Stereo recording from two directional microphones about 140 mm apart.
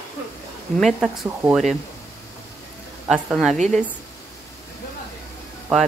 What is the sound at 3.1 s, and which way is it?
Speech, centre (ahead or behind).